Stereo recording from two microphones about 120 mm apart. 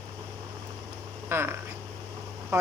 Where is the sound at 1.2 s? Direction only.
20° right (ahead or behind).